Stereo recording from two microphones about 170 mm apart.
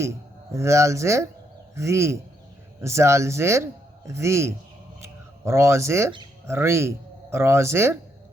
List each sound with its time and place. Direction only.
0.5 s a man's voice: 15° right (ahead or behind)